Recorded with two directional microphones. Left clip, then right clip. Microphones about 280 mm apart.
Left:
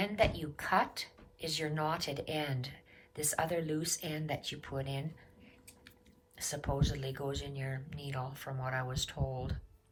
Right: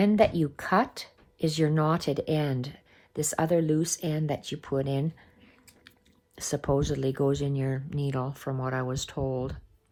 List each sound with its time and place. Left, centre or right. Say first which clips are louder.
0.0 s speech: right 9 dB; centre
6.3 s speech: right 10 dB; centre